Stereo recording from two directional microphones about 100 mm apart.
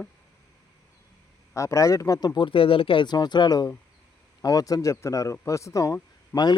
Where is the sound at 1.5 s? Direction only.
30° left (ahead or behind).